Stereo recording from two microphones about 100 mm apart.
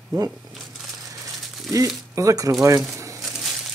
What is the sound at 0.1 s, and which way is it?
Speech, 45° right (ahead or behind).